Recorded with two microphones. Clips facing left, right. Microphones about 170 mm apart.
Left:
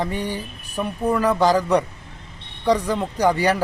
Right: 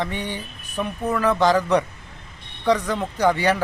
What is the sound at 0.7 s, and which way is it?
Speech, 10° left (ahead or behind).